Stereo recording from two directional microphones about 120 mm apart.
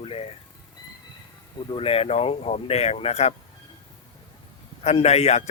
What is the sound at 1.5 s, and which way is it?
Speech, 45° left (ahead or behind).